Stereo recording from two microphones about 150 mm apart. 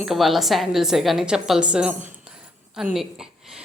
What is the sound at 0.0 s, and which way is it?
A woman's voice, centre (ahead or behind).